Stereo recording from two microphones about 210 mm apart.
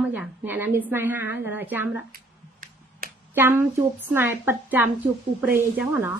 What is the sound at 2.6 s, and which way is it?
Finger snapping, 45° right (ahead or behind).